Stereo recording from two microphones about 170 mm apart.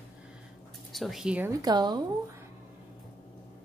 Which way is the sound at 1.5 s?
25° right (ahead or behind).